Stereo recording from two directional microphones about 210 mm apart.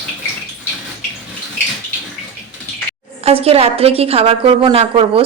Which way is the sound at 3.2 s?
30° right (ahead or behind).